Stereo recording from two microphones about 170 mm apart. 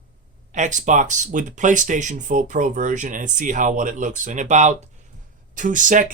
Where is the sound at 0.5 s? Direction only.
45° right (ahead or behind).